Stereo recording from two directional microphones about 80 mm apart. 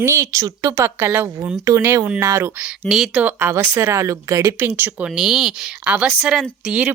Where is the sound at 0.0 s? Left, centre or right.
Right.